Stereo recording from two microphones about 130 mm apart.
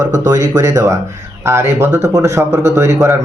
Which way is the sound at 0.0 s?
30° right (ahead or behind).